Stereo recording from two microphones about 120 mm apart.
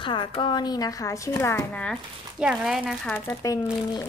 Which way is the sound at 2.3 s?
5° right (ahead or behind).